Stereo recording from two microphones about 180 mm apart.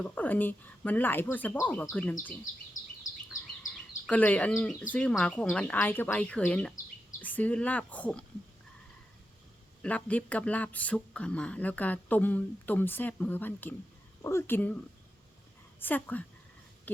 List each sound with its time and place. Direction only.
0.0 s speech: 10° left (ahead or behind)
2.8 s a sound: 45° left (ahead or behind)
4.0 s speech: 10° left (ahead or behind)
9.8 s speech: 10° left (ahead or behind)
15.8 s speech: 10° left (ahead or behind)